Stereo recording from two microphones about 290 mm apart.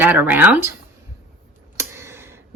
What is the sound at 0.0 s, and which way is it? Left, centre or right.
Speech, centre.